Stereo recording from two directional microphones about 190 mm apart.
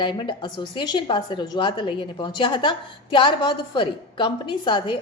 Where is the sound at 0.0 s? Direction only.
25° left (ahead or behind).